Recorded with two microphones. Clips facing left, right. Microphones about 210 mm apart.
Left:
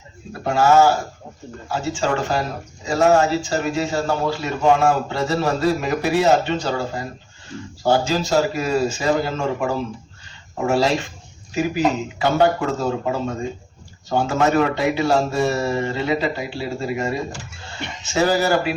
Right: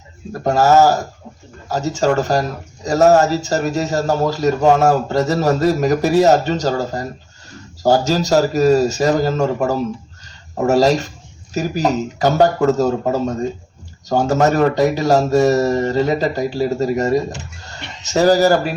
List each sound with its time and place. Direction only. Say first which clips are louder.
0.3 s speech: right 3 dB; 40° right (ahead or behind)